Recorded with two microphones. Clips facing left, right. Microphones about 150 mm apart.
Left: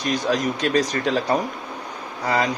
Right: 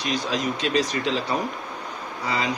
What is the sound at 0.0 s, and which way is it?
Speech, 50° left (ahead or behind).